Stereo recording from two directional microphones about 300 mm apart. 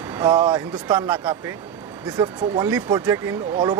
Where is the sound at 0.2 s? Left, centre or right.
Centre.